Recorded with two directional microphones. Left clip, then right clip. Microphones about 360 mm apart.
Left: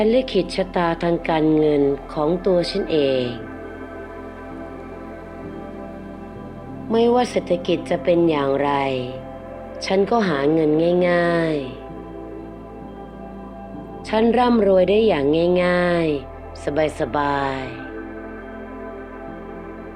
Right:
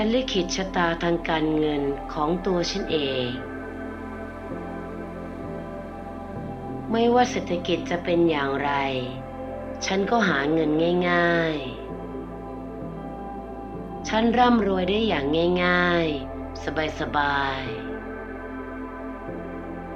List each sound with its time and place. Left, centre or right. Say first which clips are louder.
0.0 s a woman's voice: left 6 dB; left
6.9 s a woman's voice: left 3 dB; left
14.1 s a woman's voice: left 3 dB; left